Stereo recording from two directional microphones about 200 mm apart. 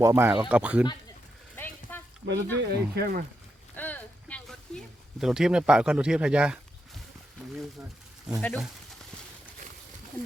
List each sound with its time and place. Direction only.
0.0 s speech: 10° right (ahead or behind)
1.5 s a sound: 10° left (ahead or behind)
2.2 s speech: 60° right (ahead or behind)
3.8 s a sound: 10° left (ahead or behind)
5.2 s speech: 5° right (ahead or behind)
8.4 s speech: 5° left (ahead or behind)